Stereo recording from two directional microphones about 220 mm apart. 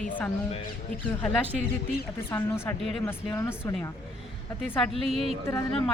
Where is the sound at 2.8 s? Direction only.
Centre (ahead or behind).